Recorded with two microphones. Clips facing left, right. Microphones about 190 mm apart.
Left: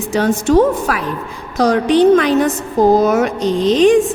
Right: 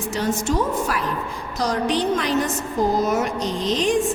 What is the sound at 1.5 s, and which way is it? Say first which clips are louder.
A woman's voice: left 10 dB; 65° left (ahead or behind).